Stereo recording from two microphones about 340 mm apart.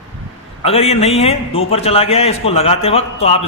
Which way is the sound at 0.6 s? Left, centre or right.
Centre.